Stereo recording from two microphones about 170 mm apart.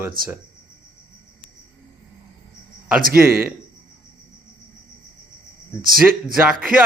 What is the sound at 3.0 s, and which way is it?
Speech, 60° right (ahead or behind).